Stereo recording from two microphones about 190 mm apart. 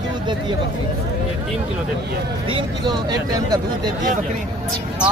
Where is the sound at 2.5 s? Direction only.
20° right (ahead or behind).